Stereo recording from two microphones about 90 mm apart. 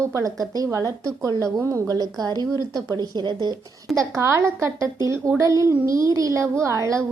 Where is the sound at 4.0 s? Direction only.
30° right (ahead or behind).